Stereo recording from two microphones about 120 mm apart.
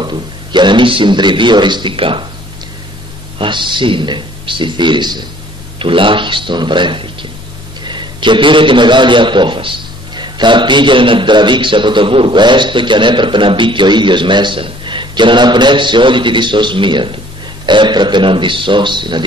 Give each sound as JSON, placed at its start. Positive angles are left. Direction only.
{"t": 0.0, "sound": "a man's voice", "side_deg": -40}
{"t": 3.3, "sound": "a man's voice", "side_deg": -40}